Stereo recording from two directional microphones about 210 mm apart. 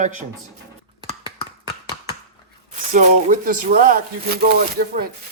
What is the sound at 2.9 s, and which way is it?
Speech, 35° right (ahead or behind).